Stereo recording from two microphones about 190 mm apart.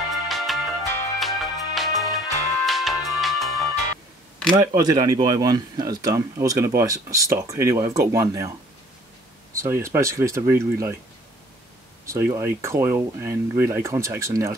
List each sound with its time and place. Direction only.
0.1 s music: centre (ahead or behind)
4.5 s speech: 20° right (ahead or behind)
9.5 s speech: 15° right (ahead or behind)
12.1 s speech: 15° right (ahead or behind)